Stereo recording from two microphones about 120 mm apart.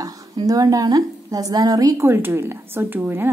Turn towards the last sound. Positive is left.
turn(degrees=-15)  # may be behind; listen again after turning